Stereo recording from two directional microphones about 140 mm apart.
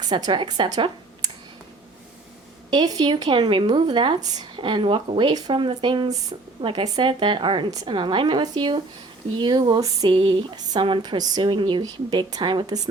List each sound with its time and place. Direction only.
0.0 s speech: 30° right (ahead or behind)
2.6 s speech: 30° right (ahead or behind)